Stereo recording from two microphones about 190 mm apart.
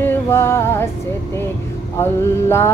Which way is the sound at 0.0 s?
10° left (ahead or behind).